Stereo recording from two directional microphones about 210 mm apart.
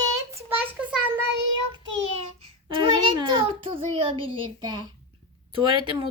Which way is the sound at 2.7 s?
25° right (ahead or behind).